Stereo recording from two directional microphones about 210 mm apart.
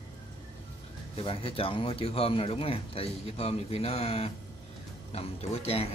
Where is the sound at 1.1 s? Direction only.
25° left (ahead or behind).